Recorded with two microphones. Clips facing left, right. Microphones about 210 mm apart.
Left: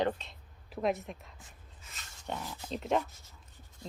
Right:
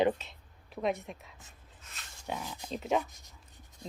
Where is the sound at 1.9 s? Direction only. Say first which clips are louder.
Right 1 dB; 5° right (ahead or behind).